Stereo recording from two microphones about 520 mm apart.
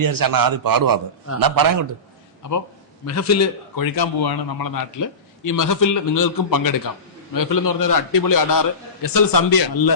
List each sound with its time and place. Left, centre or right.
0.0 s a man's voice: right
3.1 s a man's voice: left